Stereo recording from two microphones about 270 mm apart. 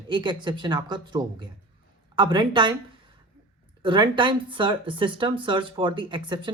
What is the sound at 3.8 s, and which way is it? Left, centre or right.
Speech, centre.